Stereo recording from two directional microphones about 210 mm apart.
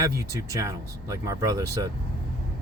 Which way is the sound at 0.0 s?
15° right (ahead or behind).